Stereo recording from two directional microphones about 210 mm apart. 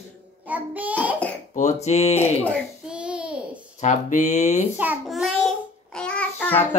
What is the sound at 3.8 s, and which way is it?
Speech, 35° left (ahead or behind).